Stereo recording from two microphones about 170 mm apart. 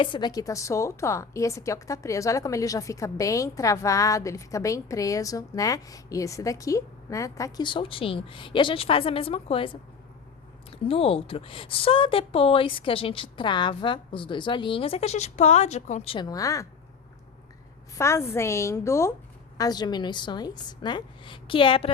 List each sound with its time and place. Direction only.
0.0 s a woman's voice: 25° left (ahead or behind)
17.9 s a woman's voice: 15° left (ahead or behind)